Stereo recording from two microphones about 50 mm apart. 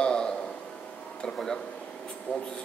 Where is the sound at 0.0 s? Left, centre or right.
Centre.